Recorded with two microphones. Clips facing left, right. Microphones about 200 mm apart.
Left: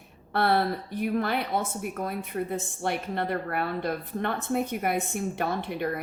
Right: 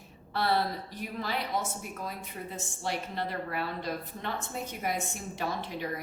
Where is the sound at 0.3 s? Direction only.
60° left (ahead or behind).